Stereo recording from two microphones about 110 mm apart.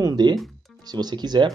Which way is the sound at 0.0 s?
40° right (ahead or behind).